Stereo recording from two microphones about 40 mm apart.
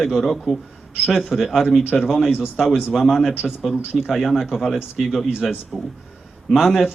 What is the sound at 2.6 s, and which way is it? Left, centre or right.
Speech, centre.